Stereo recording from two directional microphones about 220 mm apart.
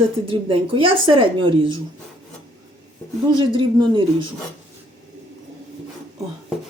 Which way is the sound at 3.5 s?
20° right (ahead or behind).